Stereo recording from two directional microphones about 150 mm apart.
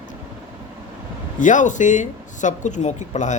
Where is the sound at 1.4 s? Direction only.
55° left (ahead or behind).